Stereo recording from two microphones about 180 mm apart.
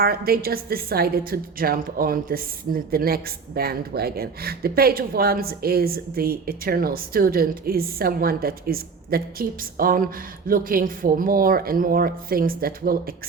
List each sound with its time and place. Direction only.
0.0 s a woman's voice: 55° right (ahead or behind)